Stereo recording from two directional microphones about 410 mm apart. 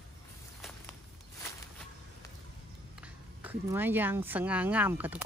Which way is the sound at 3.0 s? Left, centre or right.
Centre.